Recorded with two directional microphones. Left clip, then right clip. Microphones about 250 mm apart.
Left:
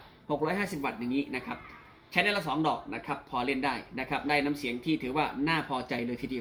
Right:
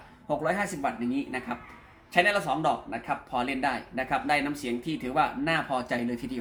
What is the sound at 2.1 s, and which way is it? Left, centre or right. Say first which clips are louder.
Speech: right 4 dB; centre.